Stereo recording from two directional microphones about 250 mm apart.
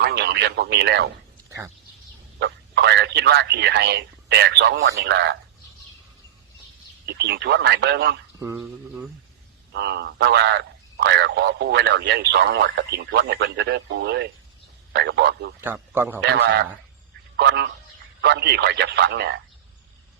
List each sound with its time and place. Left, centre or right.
0.0 s speech: right
1.5 s a sound: centre
2.4 s speech: right
7.0 s speech: right
8.4 s speech: centre
9.7 s speech: right
15.6 s speech: centre
16.3 s a man's voice: right